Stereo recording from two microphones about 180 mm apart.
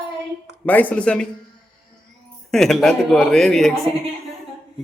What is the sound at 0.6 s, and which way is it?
Speech, 10° left (ahead or behind).